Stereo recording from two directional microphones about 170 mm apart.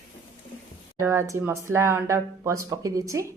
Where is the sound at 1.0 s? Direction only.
15° right (ahead or behind).